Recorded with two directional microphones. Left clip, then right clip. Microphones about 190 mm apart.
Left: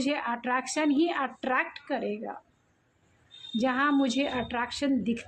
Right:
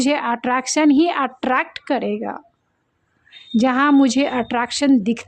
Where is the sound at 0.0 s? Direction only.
50° right (ahead or behind).